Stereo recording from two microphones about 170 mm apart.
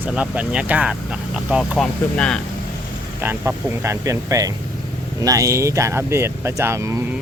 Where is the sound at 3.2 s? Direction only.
10° right (ahead or behind).